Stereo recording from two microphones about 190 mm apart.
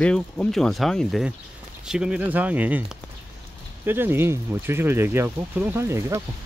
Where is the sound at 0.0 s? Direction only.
5° left (ahead or behind).